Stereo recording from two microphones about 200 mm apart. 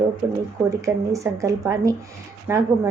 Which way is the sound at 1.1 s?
15° right (ahead or behind).